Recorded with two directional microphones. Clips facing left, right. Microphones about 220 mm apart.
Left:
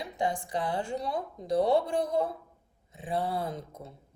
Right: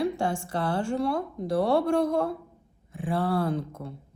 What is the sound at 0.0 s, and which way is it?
A woman's voice, 20° left (ahead or behind).